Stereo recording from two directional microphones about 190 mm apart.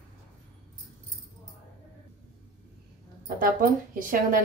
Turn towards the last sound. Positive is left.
turn(degrees=-45)  # may be behind; listen again after turning